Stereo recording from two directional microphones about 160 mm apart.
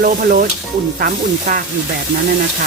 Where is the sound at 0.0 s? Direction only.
65° right (ahead or behind).